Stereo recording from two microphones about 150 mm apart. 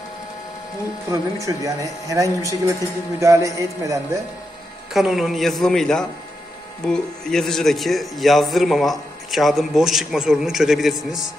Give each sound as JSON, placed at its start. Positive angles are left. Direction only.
{"t": 1.1, "sound": "speech", "side_deg": -20}
{"t": 4.9, "sound": "a man's voice", "side_deg": 0}